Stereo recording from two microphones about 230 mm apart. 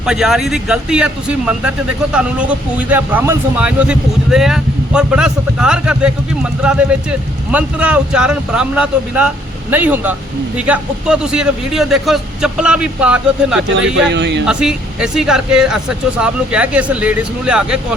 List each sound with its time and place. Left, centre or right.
0.0 s speech: centre
14.1 s speech: right
14.4 s speech: centre